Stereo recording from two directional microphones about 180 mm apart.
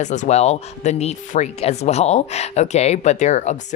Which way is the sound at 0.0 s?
40° left (ahead or behind).